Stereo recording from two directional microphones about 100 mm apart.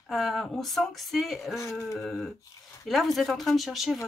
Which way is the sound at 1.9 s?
Centre (ahead or behind).